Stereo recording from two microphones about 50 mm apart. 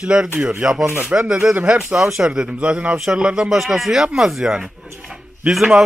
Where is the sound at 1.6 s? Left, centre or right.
Centre.